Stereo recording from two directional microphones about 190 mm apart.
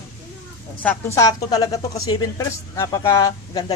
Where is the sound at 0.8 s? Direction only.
15° left (ahead or behind).